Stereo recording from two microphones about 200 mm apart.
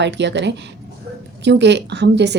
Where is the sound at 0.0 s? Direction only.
60° right (ahead or behind).